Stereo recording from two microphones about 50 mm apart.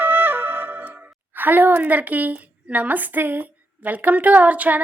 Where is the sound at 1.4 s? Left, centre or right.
Right.